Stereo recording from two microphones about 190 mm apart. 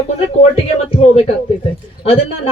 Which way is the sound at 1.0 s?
35° left (ahead or behind).